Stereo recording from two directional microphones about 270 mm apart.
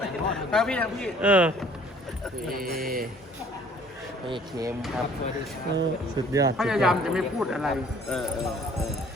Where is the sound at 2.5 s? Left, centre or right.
Right.